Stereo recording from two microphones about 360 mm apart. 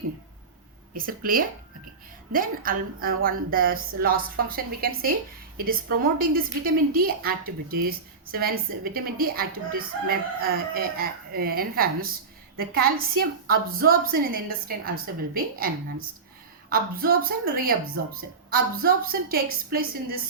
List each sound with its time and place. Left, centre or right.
0.9 s a woman's voice: right